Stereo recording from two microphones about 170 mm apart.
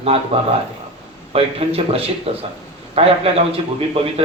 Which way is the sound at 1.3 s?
35° right (ahead or behind).